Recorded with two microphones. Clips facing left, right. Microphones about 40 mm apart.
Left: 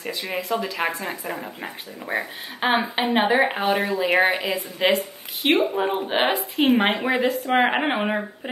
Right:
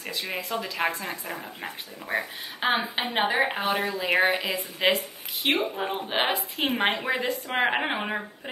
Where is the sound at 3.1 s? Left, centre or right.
Centre.